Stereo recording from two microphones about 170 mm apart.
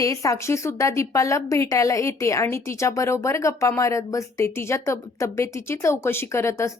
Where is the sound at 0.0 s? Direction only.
20° left (ahead or behind).